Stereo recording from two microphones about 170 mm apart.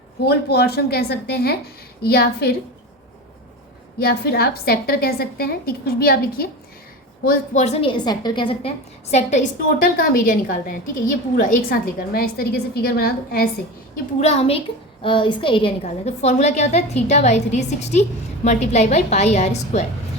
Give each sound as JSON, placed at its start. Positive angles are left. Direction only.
{"t": 0.3, "sound": "a woman's voice", "side_deg": 70}
{"t": 3.9, "sound": "a woman's voice", "side_deg": 65}
{"t": 7.3, "sound": "a woman's voice", "side_deg": 45}
{"t": 9.7, "sound": "a woman's voice", "side_deg": 55}
{"t": 14.2, "sound": "a woman's voice", "side_deg": 40}